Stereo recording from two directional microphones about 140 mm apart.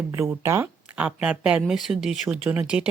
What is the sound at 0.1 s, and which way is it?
Speech, 20° right (ahead or behind).